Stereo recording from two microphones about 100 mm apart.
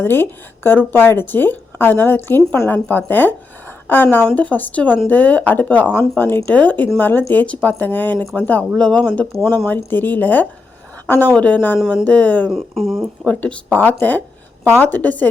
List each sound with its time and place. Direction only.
0.0 s speech: 20° left (ahead or behind)
12.5 s speech: centre (ahead or behind)
13.2 s speech: 15° left (ahead or behind)